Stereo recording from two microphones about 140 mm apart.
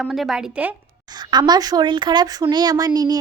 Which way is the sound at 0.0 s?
5° right (ahead or behind).